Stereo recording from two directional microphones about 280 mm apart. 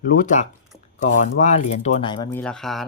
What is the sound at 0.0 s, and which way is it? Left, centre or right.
Speech, left.